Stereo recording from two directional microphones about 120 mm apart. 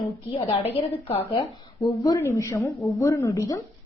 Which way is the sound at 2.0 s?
25° left (ahead or behind).